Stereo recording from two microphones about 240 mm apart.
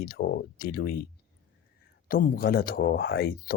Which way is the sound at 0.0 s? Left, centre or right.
Left.